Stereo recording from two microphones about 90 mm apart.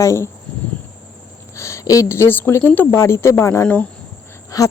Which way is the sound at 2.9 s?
30° left (ahead or behind).